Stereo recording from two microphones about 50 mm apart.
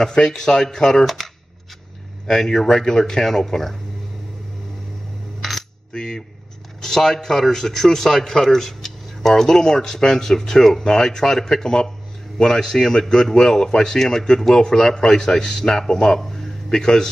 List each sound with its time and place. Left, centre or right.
0.0 s a man's voice: centre
5.4 s coin: centre
5.9 s a sound: centre
6.8 s a man's voice: centre